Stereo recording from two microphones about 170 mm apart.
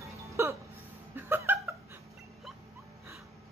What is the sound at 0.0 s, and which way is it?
Hiccup, 15° right (ahead or behind).